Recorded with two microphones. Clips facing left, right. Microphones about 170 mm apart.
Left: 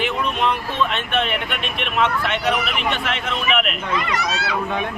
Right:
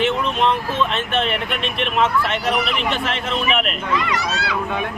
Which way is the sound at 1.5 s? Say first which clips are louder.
Right 3 dB; 35° right (ahead or behind).